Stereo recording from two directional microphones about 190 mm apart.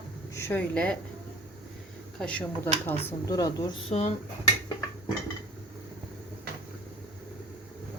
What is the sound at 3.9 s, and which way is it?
Dishes, 35° left (ahead or behind).